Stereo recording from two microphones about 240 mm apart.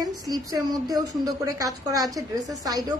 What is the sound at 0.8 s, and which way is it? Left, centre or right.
A woman's voice, centre.